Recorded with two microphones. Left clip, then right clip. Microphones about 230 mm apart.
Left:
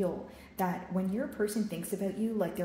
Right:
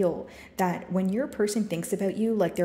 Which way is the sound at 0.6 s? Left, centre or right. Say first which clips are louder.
Right 6 dB; right.